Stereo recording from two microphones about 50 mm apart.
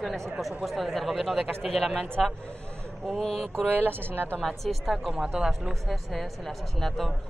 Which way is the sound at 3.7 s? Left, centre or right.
Right.